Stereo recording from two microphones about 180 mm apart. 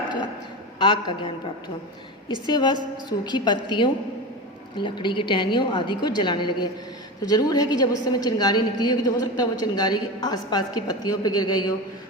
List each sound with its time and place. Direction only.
0.8 s a woman's voice: 25° left (ahead or behind)
2.5 s a woman's voice: 25° left (ahead or behind)